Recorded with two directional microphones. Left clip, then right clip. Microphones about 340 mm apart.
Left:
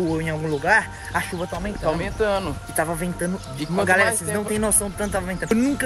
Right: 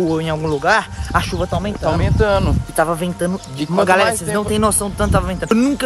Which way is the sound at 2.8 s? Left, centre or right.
Centre.